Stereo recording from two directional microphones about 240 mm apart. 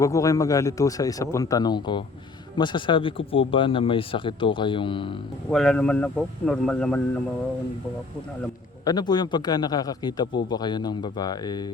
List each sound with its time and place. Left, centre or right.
0.0 s a man's voice: centre
5.5 s speech: centre
8.8 s a man's voice: centre